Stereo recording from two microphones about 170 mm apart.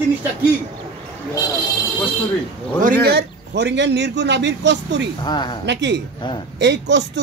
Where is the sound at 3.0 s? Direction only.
80° right.